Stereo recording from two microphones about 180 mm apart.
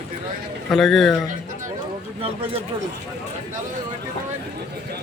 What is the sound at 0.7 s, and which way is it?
Speech, centre (ahead or behind).